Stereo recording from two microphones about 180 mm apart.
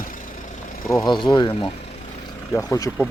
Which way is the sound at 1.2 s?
25° left (ahead or behind).